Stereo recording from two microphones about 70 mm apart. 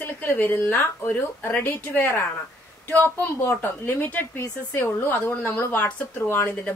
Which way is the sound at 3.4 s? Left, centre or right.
Left.